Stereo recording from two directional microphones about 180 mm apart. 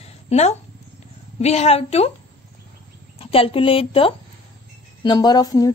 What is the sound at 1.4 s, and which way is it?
Speech, 35° left (ahead or behind).